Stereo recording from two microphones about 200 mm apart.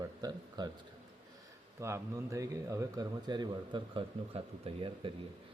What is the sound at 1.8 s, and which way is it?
Speech, 15° right (ahead or behind).